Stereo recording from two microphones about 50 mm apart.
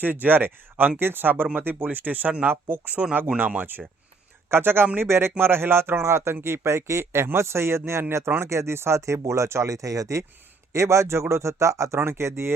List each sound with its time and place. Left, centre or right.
0.0 s speech: right
4.4 s speech: right
10.7 s speech: right
11.9 s speech: right